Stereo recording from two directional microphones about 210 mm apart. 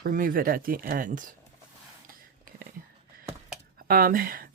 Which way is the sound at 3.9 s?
45° right (ahead or behind).